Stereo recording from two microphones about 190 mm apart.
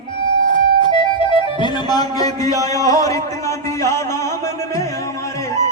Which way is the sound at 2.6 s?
15° left (ahead or behind).